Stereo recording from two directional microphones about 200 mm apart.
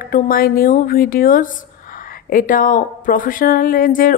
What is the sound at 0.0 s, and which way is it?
A woman's voice, 45° left (ahead or behind).